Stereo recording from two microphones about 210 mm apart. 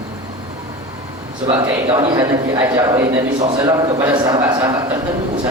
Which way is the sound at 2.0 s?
20° right (ahead or behind).